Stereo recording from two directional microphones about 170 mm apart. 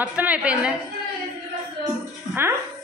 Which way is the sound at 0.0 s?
10° right (ahead or behind).